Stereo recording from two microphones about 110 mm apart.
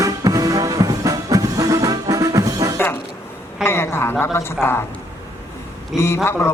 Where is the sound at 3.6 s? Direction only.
20° left (ahead or behind).